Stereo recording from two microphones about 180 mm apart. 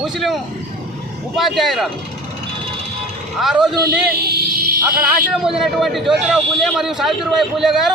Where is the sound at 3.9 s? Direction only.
60° right (ahead or behind).